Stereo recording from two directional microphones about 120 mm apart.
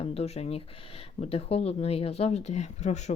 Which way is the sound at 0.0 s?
60° left (ahead or behind).